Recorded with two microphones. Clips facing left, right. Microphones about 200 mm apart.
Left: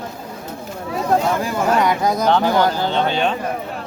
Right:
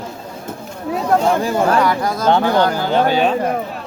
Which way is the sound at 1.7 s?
20° left (ahead or behind).